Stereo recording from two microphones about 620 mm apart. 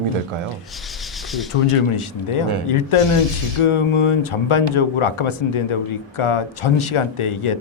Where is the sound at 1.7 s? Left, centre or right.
Left.